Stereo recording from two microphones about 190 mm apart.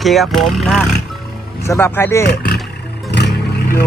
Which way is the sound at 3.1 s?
65° left (ahead or behind).